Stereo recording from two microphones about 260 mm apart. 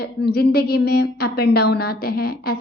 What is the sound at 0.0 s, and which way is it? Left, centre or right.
A woman's voice, left.